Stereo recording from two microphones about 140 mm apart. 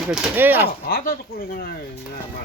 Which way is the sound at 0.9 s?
90° left.